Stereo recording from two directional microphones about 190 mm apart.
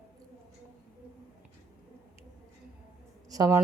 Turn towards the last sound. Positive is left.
turn(degrees=-15)  # may be behind; listen again after turning